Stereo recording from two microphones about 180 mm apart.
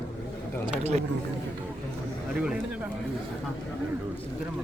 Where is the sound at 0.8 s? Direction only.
35° right (ahead or behind).